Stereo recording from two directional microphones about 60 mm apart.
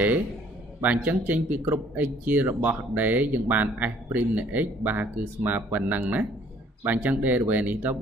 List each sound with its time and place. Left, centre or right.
0.7 s a man's voice: right